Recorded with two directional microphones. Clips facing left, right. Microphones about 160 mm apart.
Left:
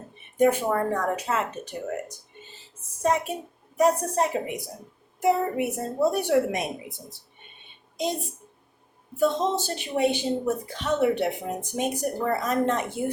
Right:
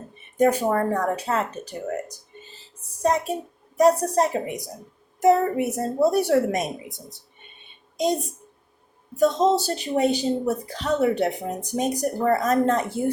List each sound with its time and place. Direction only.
0.3 s a woman's voice: 40° right (ahead or behind)
9.1 s a woman's voice: 40° right (ahead or behind)